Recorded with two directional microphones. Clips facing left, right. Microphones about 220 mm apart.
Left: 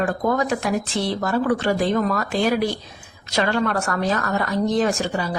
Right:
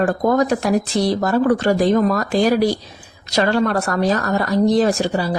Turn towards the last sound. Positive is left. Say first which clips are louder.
# right 5 dB
turn(degrees=-35)  # may be behind; listen again after turning